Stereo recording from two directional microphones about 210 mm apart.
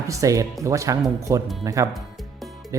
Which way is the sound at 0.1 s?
15° right (ahead or behind).